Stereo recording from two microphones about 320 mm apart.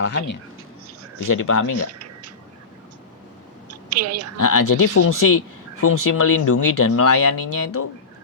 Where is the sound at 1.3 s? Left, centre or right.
Left.